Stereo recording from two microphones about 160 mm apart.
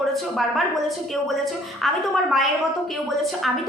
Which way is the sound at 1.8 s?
Centre (ahead or behind).